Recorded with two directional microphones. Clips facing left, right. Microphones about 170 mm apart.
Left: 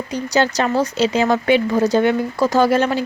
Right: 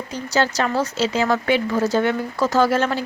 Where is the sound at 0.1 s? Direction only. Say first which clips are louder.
Left 3 dB; 15° left (ahead or behind).